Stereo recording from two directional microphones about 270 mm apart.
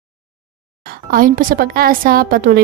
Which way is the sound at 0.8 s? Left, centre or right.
Right.